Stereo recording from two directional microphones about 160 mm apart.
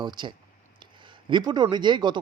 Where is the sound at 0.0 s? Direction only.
30° right (ahead or behind).